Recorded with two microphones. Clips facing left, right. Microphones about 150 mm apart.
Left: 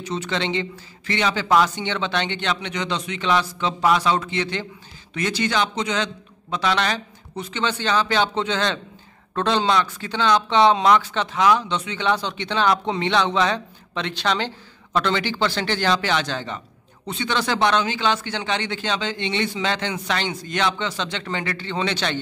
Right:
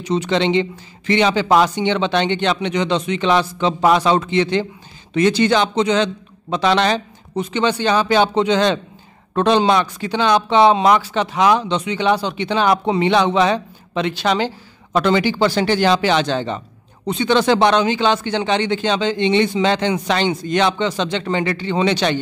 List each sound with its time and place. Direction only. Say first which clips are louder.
0.0 s speech: right 8 dB; 15° right (ahead or behind)